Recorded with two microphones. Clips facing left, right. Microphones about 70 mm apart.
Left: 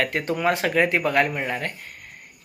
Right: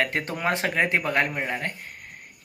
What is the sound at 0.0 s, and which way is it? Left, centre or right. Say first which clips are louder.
Speech: left 3 dB; right.